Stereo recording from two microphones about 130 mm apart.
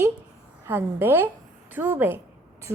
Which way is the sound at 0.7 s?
15° right (ahead or behind).